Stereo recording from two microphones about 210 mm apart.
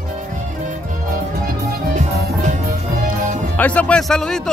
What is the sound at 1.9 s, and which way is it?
Music, 35° right (ahead or behind).